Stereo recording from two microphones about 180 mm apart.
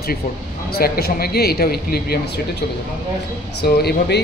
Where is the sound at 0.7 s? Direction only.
60° left (ahead or behind).